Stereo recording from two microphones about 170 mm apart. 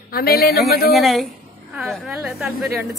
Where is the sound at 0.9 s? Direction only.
Centre (ahead or behind).